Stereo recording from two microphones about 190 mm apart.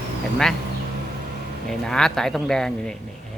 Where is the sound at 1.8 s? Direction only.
Centre (ahead or behind).